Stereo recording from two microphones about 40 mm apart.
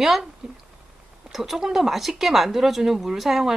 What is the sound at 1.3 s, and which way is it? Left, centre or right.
A woman's voice, centre.